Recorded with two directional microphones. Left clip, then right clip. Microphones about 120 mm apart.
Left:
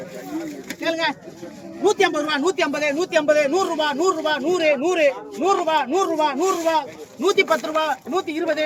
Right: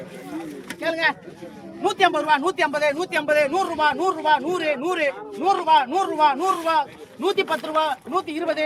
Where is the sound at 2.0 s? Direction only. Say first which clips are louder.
Right 1 dB; 35° right (ahead or behind).